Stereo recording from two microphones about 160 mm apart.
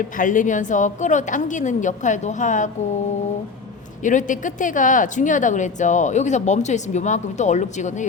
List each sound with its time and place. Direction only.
0.0 s a woman's voice: 55° left (ahead or behind)
4.0 s a woman's voice: 50° left (ahead or behind)